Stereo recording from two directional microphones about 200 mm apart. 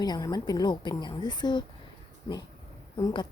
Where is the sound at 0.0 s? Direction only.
20° left (ahead or behind).